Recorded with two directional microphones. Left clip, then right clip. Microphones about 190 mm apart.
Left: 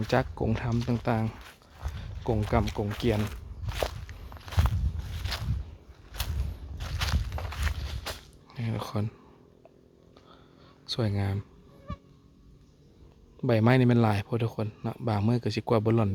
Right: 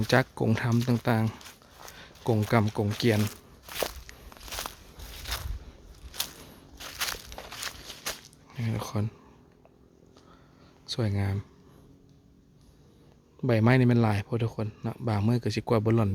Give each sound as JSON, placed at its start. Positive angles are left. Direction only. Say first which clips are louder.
{"t": 0.1, "sound": "speech", "louder": "right 3 dB", "side_deg": -20}
{"t": 2.2, "sound": "speech", "louder": "right 2 dB", "side_deg": -20}
{"t": 3.0, "sound": "walk", "louder": "right 3 dB", "side_deg": -15}
{"t": 6.1, "sound": "a sound", "louder": "right 3 dB", "side_deg": -15}
{"t": 8.4, "sound": "speech", "louder": "even", "side_deg": -10}
{"t": 10.8, "sound": "speech", "louder": "left 1 dB", "side_deg": -5}
{"t": 13.4, "sound": "speech", "louder": "even", "side_deg": -5}